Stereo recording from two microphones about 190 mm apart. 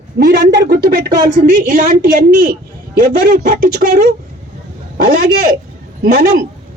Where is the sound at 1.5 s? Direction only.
45° right (ahead or behind).